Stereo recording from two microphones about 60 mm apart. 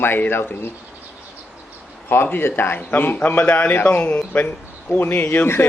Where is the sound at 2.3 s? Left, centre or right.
Left.